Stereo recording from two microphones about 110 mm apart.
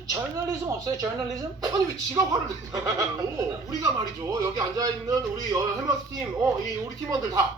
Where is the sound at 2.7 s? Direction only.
30° right (ahead or behind).